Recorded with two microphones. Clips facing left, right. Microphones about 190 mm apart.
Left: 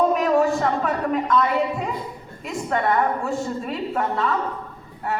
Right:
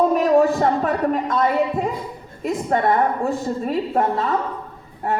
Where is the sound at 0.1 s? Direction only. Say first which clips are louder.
Right 3 dB; 35° right (ahead or behind).